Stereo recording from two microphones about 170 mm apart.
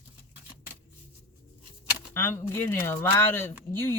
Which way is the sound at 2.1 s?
15° left (ahead or behind).